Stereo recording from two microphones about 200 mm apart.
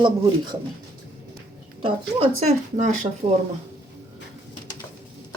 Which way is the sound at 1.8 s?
30° right (ahead or behind).